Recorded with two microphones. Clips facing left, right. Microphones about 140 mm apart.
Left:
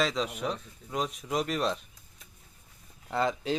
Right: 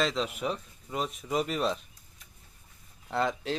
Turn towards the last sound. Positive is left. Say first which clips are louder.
# left 1 dB
turn(degrees=0)  # may be behind; listen again after turning